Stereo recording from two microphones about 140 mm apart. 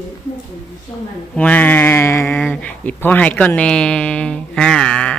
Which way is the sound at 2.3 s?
10° left (ahead or behind).